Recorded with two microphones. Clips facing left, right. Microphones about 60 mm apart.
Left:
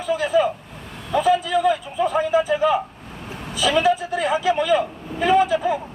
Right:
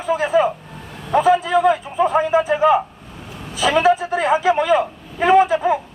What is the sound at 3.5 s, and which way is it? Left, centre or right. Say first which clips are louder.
Vehicle: right 3 dB; right.